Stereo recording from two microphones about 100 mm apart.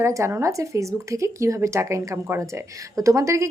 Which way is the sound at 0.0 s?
30° right (ahead or behind).